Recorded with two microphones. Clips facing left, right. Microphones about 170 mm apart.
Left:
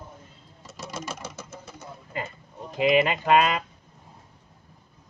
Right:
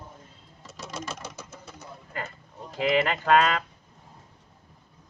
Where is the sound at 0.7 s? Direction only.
Centre (ahead or behind).